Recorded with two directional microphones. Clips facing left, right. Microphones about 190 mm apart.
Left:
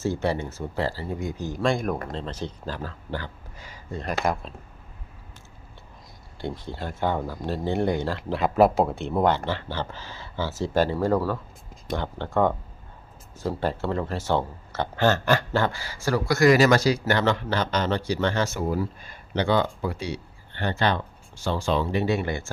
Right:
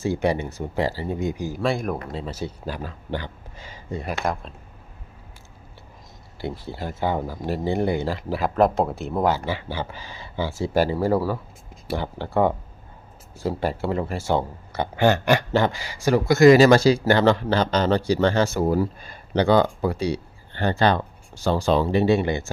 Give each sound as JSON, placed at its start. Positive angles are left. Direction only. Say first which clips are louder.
{"t": 0.0, "sound": "speech", "louder": "right 3 dB", "side_deg": -15}
{"t": 1.5, "sound": "speech", "louder": "left 3 dB", "side_deg": -5}
{"t": 4.2, "sound": "speech", "louder": "left 3 dB", "side_deg": 0}
{"t": 6.4, "sound": "speech", "louder": "right 2 dB", "side_deg": -5}
{"t": 8.4, "sound": "speech", "louder": "left 1 dB", "side_deg": 5}